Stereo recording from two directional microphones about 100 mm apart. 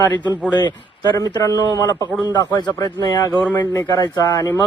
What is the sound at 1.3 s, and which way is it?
Speech, 45° left (ahead or behind).